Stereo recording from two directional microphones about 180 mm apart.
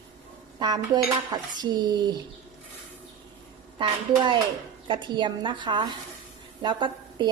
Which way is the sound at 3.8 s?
25° right (ahead or behind).